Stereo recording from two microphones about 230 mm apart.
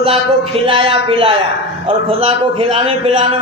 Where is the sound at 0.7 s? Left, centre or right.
Right.